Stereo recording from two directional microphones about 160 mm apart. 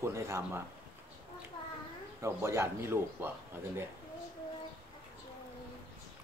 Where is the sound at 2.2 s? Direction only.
15° right (ahead or behind).